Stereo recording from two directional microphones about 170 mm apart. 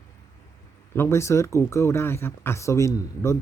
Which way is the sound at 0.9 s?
15° left (ahead or behind).